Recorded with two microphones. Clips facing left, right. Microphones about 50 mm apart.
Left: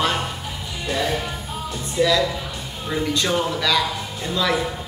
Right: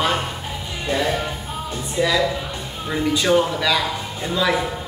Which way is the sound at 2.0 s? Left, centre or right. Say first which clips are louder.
Even; centre.